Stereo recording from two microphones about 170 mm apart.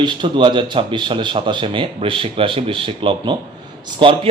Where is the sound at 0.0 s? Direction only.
25° right (ahead or behind).